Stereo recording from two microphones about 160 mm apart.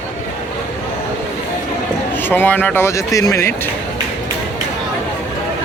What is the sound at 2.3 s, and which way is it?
A man's voice, 10° left (ahead or behind).